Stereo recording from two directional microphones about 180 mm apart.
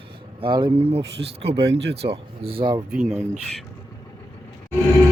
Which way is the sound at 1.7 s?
75° right (ahead or behind).